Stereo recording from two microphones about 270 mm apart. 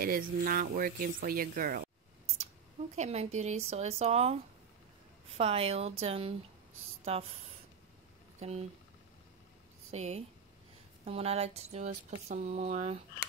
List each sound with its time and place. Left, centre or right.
0.0 s speech: right
5.4 s speech: right
8.4 s speech: right
9.9 s speech: right